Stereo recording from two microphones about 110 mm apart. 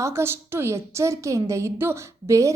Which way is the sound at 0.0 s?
25° right (ahead or behind).